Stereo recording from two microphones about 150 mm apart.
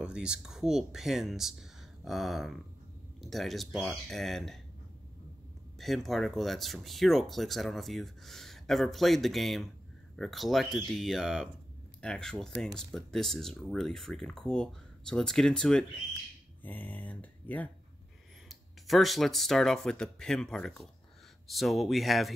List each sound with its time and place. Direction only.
0.0 s speech: 5° right (ahead or behind)
5.8 s speech: centre (ahead or behind)